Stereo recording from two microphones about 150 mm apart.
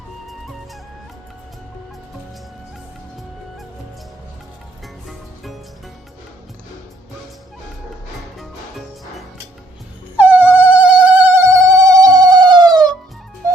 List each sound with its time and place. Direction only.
5.0 s music: centre (ahead or behind)
10.2 s mosquito: 10° right (ahead or behind); by 12.9 s 25° right (ahead or behind)